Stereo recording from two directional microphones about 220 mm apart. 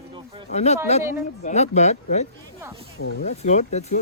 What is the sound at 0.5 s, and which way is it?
Speech, 30° left (ahead or behind).